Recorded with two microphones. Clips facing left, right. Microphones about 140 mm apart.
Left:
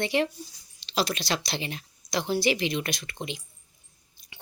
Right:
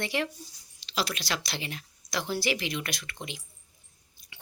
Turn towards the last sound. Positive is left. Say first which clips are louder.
# left 4 dB
turn(degrees=20)  # may be behind; listen again after turning